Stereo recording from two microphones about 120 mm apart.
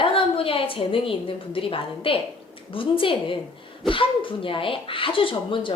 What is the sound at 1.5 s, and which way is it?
A woman's voice, 50° left (ahead or behind).